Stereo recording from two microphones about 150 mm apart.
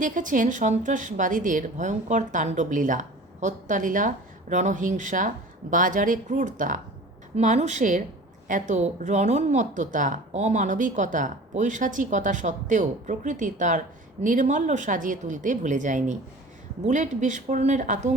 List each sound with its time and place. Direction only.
0.0 s a woman's voice: 60° right (ahead or behind)
7.3 s a woman's voice: 50° right (ahead or behind)